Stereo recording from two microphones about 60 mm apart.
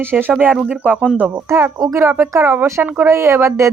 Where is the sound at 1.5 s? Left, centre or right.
Right.